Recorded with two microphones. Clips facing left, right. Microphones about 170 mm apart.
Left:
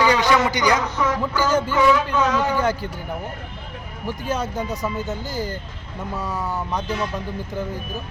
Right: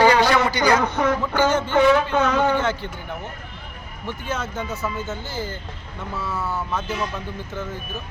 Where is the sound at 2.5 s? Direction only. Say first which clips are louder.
Left 2 dB; 40° left (ahead or behind).